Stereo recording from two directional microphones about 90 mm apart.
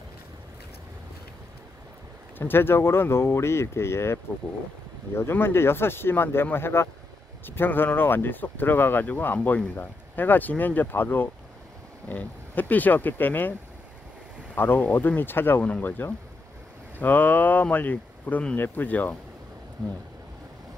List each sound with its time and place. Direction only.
2.3 s speech: 25° left (ahead or behind)